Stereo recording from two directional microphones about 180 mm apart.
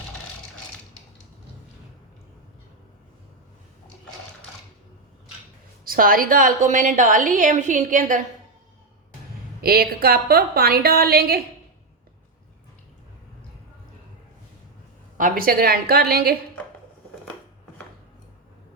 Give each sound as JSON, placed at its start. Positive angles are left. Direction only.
{"t": 5.8, "sound": "a woman's voice", "side_deg": -55}
{"t": 9.6, "sound": "a woman's voice", "side_deg": -60}
{"t": 15.2, "sound": "a woman's voice", "side_deg": -55}